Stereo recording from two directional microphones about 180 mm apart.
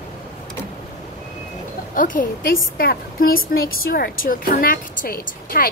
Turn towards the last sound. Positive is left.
turn(degrees=55)  # may be behind; listen again after turning